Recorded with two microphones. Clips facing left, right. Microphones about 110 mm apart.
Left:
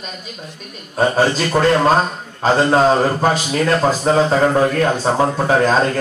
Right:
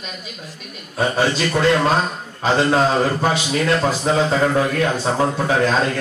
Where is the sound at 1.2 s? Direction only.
40° left (ahead or behind).